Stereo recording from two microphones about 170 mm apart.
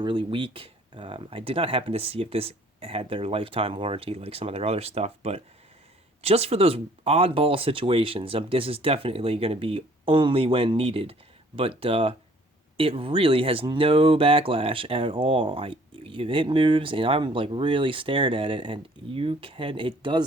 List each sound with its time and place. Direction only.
0.0 s speech: 30° right (ahead or behind)